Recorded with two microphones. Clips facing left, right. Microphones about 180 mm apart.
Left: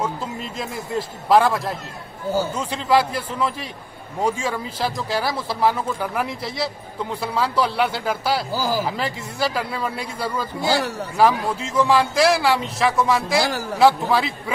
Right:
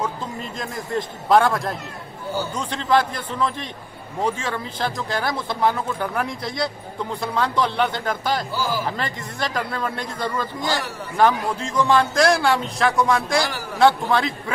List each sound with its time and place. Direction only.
0.6 s a man's voice: 5° left (ahead or behind)
8.5 s speech: 40° left (ahead or behind)
8.8 s a man's voice: 5° left (ahead or behind)